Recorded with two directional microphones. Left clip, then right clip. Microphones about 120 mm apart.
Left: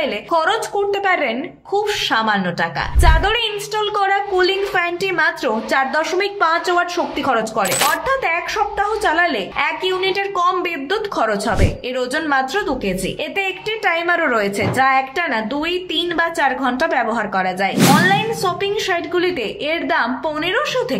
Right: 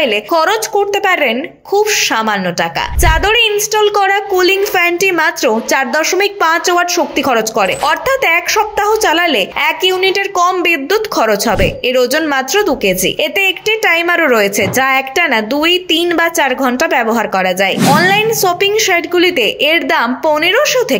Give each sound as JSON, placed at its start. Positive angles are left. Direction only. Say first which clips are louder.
{"t": 0.0, "sound": "a woman's voice", "louder": "right 6 dB", "side_deg": -25}